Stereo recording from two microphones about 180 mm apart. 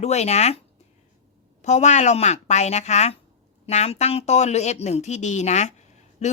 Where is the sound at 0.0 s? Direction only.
40° left (ahead or behind).